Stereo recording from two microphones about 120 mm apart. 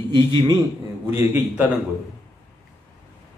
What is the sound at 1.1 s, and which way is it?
Speech, 15° right (ahead or behind).